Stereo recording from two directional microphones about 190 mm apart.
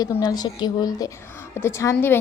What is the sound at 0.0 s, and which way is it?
A woman's voice, 20° left (ahead or behind).